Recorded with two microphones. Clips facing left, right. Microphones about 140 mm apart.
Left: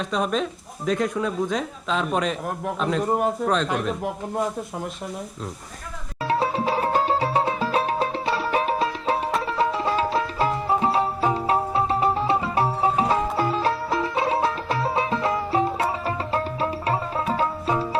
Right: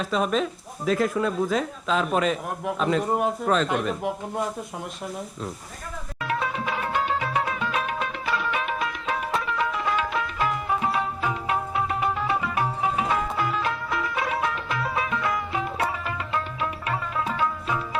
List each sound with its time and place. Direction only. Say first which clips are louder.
0.0 s a man's voice: even; centre (ahead or behind)
6.2 s music: left 5 dB; 30° left (ahead or behind)